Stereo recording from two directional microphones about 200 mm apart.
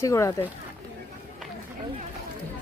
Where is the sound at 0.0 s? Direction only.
15° left (ahead or behind).